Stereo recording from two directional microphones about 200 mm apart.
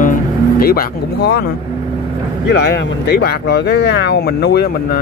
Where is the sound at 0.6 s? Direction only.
50° left (ahead or behind).